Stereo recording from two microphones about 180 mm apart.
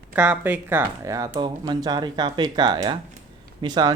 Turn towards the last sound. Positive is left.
turn(degrees=-25)  # may be behind; listen again after turning